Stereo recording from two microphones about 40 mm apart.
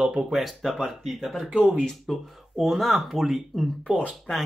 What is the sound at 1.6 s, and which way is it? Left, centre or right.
Speech, centre.